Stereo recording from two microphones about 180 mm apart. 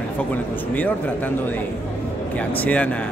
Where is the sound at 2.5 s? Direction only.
10° left (ahead or behind).